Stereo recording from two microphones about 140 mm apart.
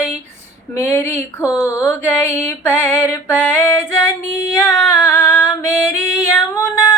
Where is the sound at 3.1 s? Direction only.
15° left (ahead or behind).